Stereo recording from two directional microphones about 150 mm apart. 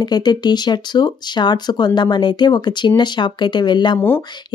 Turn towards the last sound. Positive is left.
turn(degrees=30)  # may be behind; listen again after turning